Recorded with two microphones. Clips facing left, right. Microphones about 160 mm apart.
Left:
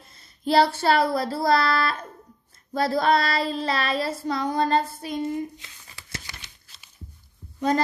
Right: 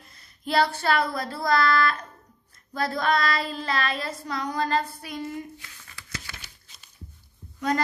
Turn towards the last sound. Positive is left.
turn(degrees=25)  # may be behind; listen again after turning